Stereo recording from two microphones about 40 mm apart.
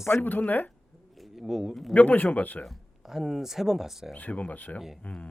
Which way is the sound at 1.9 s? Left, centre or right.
Left.